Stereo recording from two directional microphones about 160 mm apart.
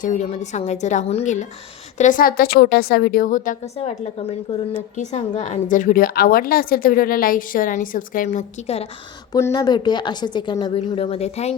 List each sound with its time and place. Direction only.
0.0 s a woman's voice: 50° left (ahead or behind)
3.8 s a woman's voice: 40° left (ahead or behind)
9.3 s a woman's voice: 20° left (ahead or behind); by 11.5 s 40° left (ahead or behind)